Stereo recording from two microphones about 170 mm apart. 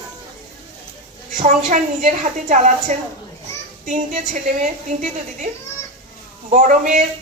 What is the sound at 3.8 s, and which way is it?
A woman's voice, 45° right (ahead or behind).